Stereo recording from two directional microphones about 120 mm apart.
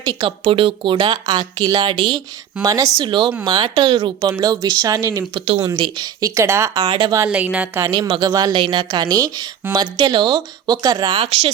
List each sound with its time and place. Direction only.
0.0 s speech: 35° right (ahead or behind)
0.4 s speech: 45° right (ahead or behind); by 3.1 s 30° right (ahead or behind)
3.1 s speech: 40° right (ahead or behind)
4.3 s speech: 30° right (ahead or behind)
5.7 s speech: 40° right (ahead or behind); by 6.8 s 25° right (ahead or behind)
6.8 s speech: 40° right (ahead or behind)
7.2 s speech: 15° right (ahead or behind)
7.8 s speech: 30° right (ahead or behind)